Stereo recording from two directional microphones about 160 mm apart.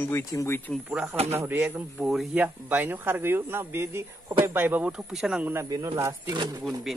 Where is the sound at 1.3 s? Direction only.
15° right (ahead or behind).